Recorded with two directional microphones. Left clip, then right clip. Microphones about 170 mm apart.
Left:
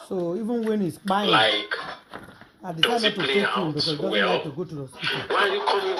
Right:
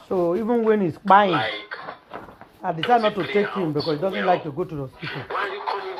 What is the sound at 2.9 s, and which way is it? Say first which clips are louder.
Speech: right 2 dB; 50° left (ahead or behind).